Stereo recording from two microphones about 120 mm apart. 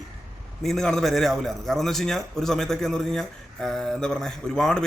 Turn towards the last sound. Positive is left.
turn(degrees=5)  # may be behind; listen again after turning